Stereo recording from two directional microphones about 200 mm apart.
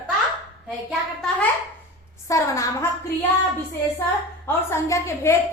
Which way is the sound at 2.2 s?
15° left (ahead or behind).